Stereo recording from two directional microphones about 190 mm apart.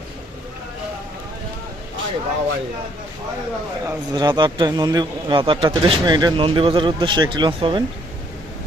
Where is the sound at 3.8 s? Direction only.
20° right (ahead or behind).